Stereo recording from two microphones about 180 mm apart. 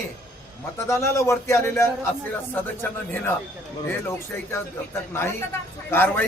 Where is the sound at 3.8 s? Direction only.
15° left (ahead or behind).